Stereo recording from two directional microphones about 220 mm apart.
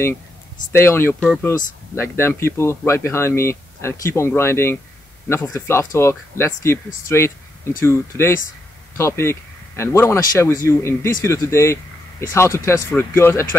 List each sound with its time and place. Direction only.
0.7 s speech: 10° left (ahead or behind)
8.9 s speech: 10° left (ahead or behind)